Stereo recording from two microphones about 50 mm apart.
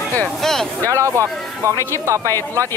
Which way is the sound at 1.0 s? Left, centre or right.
Right.